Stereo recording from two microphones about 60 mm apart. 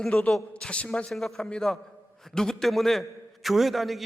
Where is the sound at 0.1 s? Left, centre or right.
Centre.